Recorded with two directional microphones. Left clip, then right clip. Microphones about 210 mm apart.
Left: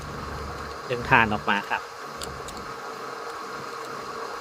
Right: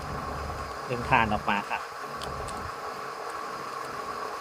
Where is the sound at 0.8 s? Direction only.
15° left (ahead or behind).